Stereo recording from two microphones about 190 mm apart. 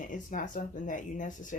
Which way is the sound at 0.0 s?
45° left (ahead or behind).